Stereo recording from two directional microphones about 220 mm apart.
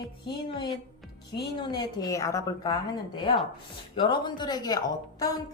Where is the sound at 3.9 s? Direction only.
20° left (ahead or behind).